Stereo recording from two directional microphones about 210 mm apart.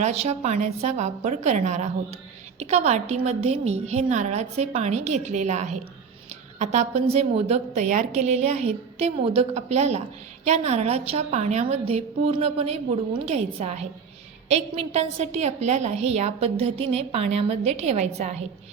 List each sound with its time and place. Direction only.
0.0 s a woman's voice: 30° right (ahead or behind)